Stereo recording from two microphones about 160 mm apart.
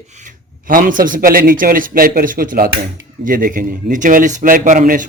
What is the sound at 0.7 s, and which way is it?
A man's voice, 60° right (ahead or behind).